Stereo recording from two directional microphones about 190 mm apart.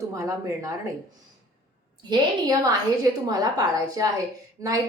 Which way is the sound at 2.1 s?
20° right (ahead or behind).